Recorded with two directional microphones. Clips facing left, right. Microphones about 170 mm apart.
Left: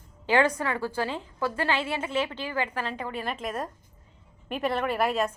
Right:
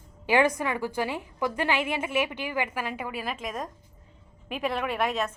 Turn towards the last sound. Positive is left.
turn(degrees=5)  # may be behind; listen again after turning